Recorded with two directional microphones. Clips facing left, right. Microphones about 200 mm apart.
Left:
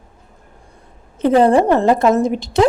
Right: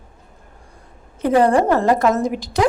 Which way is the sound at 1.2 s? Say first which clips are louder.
Left 3 dB; 25° left (ahead or behind).